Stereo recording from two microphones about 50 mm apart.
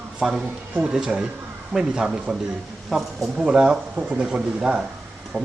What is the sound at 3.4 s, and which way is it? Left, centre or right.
A man's voice, centre.